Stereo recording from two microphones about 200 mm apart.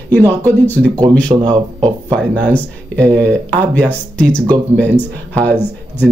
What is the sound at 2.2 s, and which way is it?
Speech, 5° left (ahead or behind).